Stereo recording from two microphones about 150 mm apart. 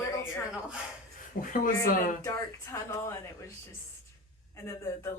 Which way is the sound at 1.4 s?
65° left (ahead or behind).